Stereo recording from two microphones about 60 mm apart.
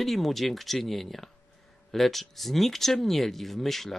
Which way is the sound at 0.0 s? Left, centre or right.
Centre.